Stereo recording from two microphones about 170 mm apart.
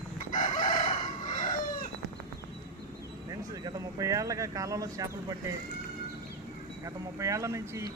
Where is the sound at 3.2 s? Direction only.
20° right (ahead or behind).